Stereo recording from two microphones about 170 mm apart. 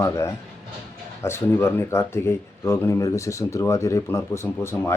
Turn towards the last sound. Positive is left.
turn(degrees=15)  # may be behind; listen again after turning